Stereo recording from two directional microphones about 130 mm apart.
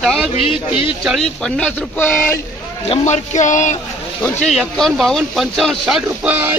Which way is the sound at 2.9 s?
65° left (ahead or behind).